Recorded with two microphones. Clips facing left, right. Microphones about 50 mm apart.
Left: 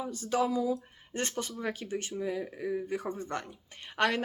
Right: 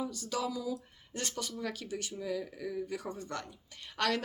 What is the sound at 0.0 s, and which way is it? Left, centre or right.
Speech, left.